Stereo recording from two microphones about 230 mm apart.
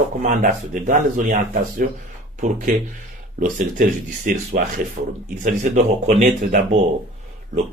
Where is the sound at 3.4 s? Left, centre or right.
Right.